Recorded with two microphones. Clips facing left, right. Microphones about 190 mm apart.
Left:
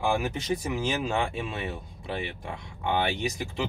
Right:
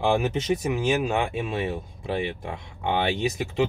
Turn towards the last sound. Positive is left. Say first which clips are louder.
# right 6 dB
turn(degrees=-20)  # may be behind; listen again after turning